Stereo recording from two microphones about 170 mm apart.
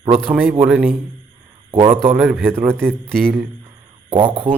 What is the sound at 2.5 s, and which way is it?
Speech, 15° right (ahead or behind).